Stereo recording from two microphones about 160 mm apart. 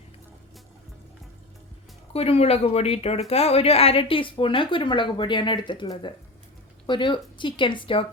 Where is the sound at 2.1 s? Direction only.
40° left (ahead or behind).